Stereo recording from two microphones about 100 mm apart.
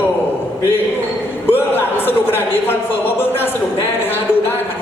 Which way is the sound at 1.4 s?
20° left (ahead or behind).